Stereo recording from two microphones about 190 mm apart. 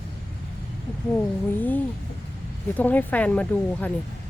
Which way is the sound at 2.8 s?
10° left (ahead or behind).